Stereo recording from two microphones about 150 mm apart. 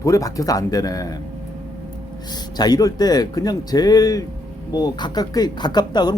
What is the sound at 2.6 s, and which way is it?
Speech, 25° left (ahead or behind).